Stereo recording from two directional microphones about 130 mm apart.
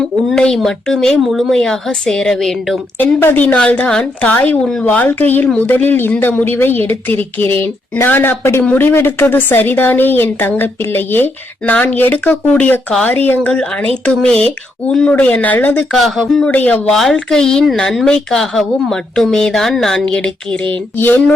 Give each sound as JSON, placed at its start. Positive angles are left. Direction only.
{"t": 0.3, "sound": "speech", "side_deg": 5}
{"t": 3.0, "sound": "a woman's voice", "side_deg": 15}
{"t": 16.5, "sound": "speech", "side_deg": 10}